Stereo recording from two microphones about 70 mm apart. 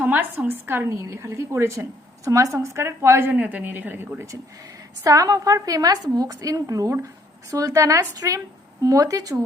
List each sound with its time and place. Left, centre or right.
0.0 s a woman's voice: right
0.9 s a woman's voice: right
3.3 s a woman's voice: right
5.0 s a woman's voice: right